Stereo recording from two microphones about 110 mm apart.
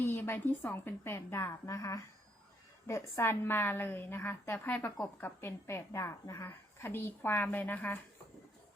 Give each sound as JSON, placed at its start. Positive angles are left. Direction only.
{"t": 0.0, "sound": "a woman's voice", "side_deg": 20}